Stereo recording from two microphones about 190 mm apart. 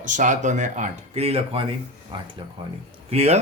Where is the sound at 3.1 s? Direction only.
35° right (ahead or behind).